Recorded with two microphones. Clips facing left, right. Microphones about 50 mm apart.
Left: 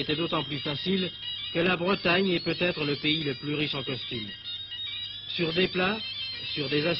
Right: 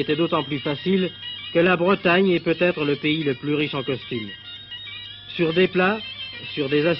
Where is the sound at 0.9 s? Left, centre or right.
Right.